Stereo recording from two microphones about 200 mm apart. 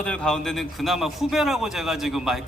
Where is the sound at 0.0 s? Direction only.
5° left (ahead or behind).